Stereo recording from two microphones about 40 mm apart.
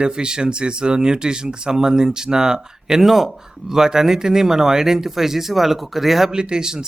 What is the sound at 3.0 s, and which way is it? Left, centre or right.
Speech, centre.